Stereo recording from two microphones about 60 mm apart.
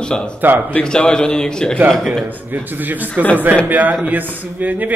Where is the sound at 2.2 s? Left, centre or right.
Right.